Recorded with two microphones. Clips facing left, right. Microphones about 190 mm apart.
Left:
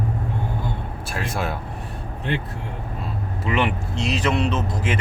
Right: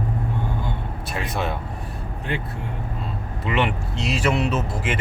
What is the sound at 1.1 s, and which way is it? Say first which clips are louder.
Speech: even; centre (ahead or behind).